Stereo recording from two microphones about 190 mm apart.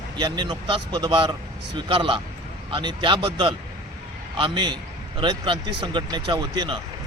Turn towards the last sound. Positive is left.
turn(degrees=-25)  # may be behind; listen again after turning